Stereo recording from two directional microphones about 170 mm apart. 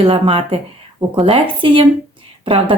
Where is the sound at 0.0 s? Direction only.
35° right (ahead or behind).